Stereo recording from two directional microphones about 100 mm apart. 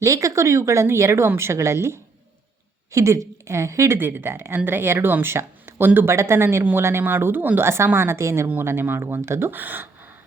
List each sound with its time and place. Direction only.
0.0 s speech: 30° right (ahead or behind)